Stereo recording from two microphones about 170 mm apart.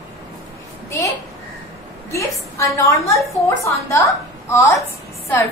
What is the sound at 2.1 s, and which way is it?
A woman's voice, 20° left (ahead or behind).